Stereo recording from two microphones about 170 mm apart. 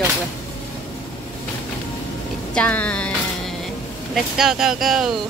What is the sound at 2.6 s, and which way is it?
Music, 5° left (ahead or behind).